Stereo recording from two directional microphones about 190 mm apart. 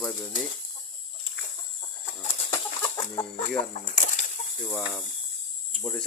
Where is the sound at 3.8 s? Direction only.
40° left (ahead or behind).